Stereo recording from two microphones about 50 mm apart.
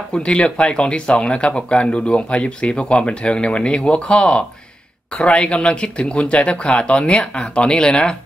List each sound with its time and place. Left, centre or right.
0.1 s speech: left